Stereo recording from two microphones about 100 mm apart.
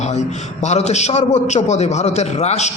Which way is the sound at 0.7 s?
90° left.